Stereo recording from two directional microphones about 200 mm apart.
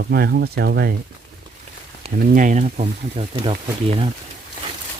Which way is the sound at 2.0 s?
45° right (ahead or behind).